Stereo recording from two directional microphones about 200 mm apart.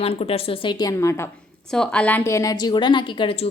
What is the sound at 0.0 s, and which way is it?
A woman's voice, 30° left (ahead or behind).